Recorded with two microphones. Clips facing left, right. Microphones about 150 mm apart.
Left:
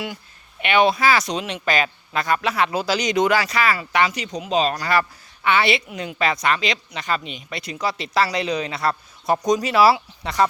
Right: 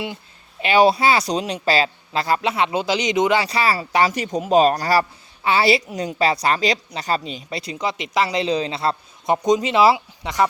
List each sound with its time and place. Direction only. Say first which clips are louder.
0.6 s speech: right 2 dB; 30° right (ahead or behind)
4.1 s speech: right 6 dB; 50° right (ahead or behind); by 10.4 s 20° right (ahead or behind)